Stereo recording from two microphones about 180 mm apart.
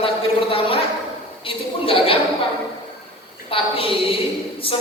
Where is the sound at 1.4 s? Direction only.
30° left (ahead or behind).